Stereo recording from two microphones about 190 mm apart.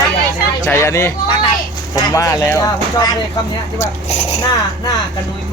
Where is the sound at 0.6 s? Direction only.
15° left (ahead or behind).